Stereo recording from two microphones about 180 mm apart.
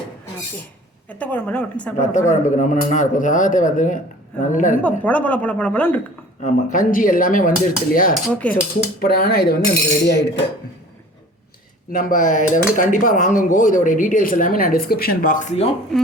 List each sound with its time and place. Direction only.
1.2 s speech: 10° left (ahead or behind)
2.3 s speech: 45° left (ahead or behind)
4.8 s speech: 10° left (ahead or behind)
6.4 s speech: 50° left (ahead or behind)
8.1 s speech: 5° left (ahead or behind)
8.5 s speech: 55° left (ahead or behind)
11.9 s speech: 50° left (ahead or behind)